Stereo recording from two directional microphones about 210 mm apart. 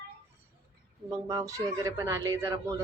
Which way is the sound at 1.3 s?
15° right (ahead or behind).